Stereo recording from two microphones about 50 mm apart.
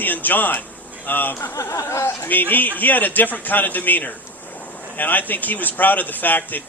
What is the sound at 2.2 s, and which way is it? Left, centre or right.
Speech, left.